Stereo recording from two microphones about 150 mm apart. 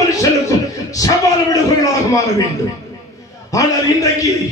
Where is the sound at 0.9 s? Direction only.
25° left (ahead or behind).